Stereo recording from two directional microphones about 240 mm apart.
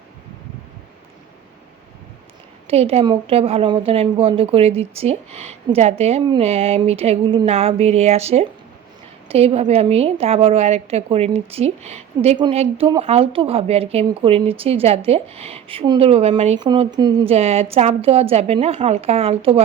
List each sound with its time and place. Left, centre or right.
2.6 s a woman's voice: right